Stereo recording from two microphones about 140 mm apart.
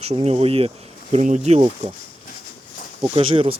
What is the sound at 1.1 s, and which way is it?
Speech, 55° right (ahead or behind).